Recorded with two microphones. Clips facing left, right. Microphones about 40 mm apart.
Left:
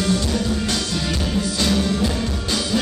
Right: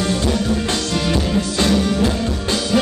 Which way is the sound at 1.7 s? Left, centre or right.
Centre.